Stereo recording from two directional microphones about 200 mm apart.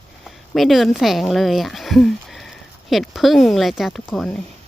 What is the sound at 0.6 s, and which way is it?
Speech, centre (ahead or behind).